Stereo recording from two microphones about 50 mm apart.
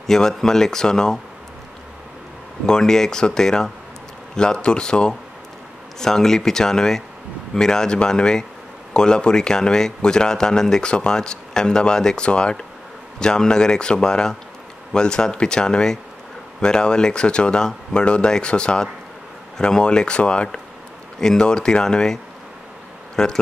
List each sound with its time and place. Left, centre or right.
0.0 s speech: centre
2.6 s speech: centre